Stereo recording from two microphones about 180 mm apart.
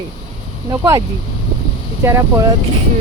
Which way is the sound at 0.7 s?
20° right (ahead or behind).